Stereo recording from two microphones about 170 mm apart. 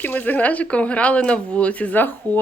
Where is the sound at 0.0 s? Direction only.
10° left (ahead or behind).